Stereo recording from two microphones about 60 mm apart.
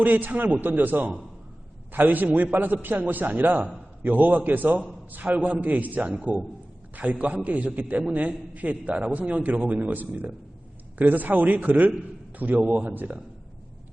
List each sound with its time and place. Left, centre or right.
0.0 s a man's voice: right